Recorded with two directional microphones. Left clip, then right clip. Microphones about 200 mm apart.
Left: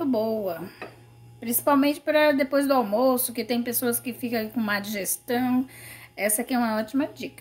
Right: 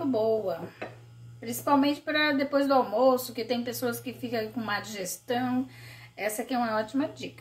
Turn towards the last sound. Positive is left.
turn(degrees=50)  # may be behind; listen again after turning